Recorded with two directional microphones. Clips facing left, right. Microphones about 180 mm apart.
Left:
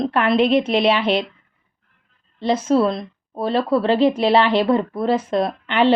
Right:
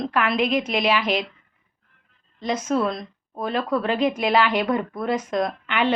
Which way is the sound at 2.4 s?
30° left (ahead or behind).